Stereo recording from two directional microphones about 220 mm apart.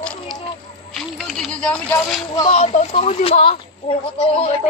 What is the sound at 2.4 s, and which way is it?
Speech, 30° left (ahead or behind).